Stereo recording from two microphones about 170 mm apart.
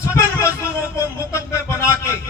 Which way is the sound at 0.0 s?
15° left (ahead or behind).